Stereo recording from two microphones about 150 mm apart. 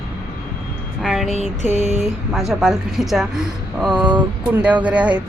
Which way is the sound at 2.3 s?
Centre (ahead or behind).